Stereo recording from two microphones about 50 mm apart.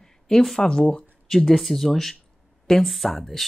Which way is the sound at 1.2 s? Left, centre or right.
Centre.